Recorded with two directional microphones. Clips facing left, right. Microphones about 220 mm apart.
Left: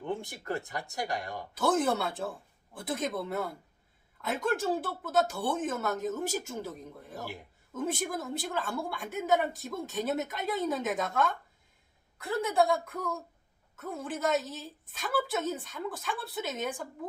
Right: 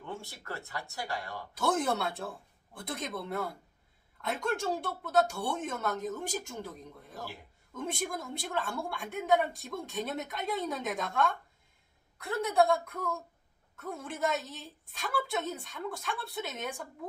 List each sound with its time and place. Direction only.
0.0 s speech: 15° left (ahead or behind)
1.5 s a woman's voice: centre (ahead or behind)